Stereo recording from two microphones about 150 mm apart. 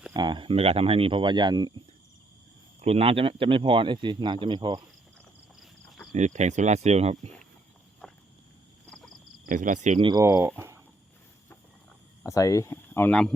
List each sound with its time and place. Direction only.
0.1 s speech: 30° right (ahead or behind)
2.8 s speech: 40° right (ahead or behind)
6.1 s speech: 50° right (ahead or behind)
8.0 s a sound: 5° left (ahead or behind)
9.5 s speech: 60° right (ahead or behind)
10.0 s speech: 30° right (ahead or behind)
10.2 s speech: 15° right (ahead or behind)
12.2 s speech: 20° left (ahead or behind)